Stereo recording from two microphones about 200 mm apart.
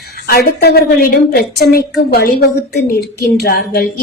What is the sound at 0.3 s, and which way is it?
A woman's voice, 50° left (ahead or behind).